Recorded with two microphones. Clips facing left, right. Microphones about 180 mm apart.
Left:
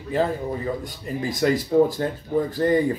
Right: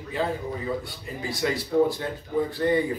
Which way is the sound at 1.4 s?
50° left (ahead or behind).